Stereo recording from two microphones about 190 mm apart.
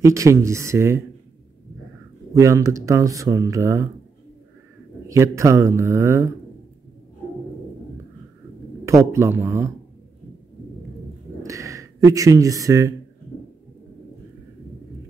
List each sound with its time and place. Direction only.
0.0 s speech: 15° right (ahead or behind)
2.3 s speech: 15° right (ahead or behind)
5.0 s speech: 15° right (ahead or behind)
8.8 s speech: 15° right (ahead or behind)
11.4 s speech: 15° right (ahead or behind)